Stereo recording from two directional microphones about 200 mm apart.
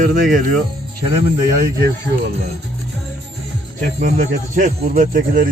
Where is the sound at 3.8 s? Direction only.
50° right (ahead or behind).